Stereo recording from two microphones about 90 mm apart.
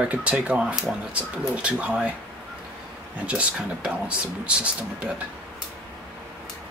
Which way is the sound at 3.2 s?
15° right (ahead or behind).